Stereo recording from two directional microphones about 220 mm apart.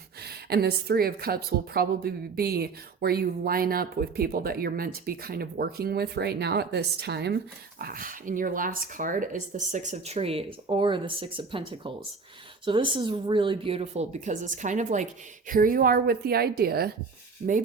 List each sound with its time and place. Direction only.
0.2 s a woman's voice: 45° right (ahead or behind)
17.4 s speech: 35° right (ahead or behind)